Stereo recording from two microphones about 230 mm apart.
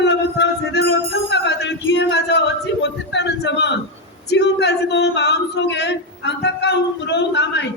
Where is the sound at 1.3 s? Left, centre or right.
Left.